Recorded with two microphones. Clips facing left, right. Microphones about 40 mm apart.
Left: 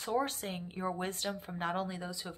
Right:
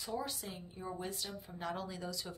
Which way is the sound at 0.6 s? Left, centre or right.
Left.